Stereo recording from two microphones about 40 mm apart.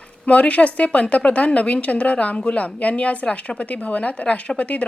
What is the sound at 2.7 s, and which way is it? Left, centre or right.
A woman's voice, left.